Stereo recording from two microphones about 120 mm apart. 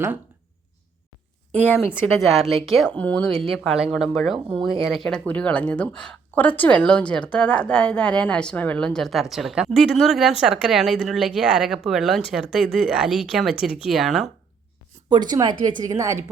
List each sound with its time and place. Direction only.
1.5 s a woman's voice: 15° left (ahead or behind)
2.1 s speech: centre (ahead or behind)
4.4 s speech: 45° right (ahead or behind)
4.9 s a woman's voice: 5° left (ahead or behind)
15.1 s a woman's voice: 35° right (ahead or behind)